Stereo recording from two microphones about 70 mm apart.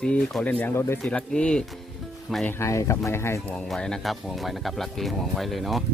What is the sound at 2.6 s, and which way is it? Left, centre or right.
Speech, left.